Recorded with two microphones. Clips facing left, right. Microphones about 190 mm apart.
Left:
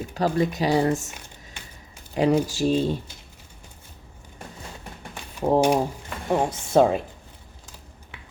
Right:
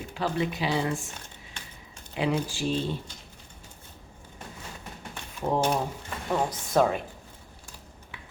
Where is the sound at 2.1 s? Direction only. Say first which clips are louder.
Left 7 dB; 40° left (ahead or behind).